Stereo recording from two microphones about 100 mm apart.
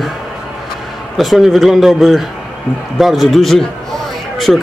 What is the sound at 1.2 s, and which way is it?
Speech, centre (ahead or behind).